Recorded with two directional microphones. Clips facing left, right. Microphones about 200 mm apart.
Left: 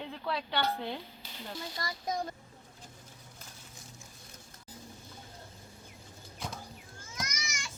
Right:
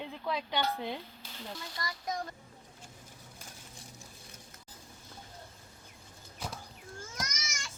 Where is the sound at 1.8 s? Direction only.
30° left (ahead or behind).